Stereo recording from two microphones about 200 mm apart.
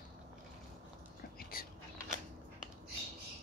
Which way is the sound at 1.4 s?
45° left (ahead or behind).